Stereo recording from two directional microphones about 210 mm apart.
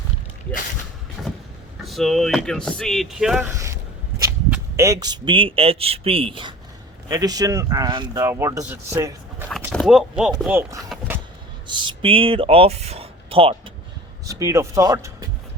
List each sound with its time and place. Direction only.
1.2 s vehicle: centre (ahead or behind)
1.8 s speech: centre (ahead or behind)
9.7 s speech: centre (ahead or behind)
11.7 s speech: 20° right (ahead or behind)
14.3 s speech: 15° right (ahead or behind)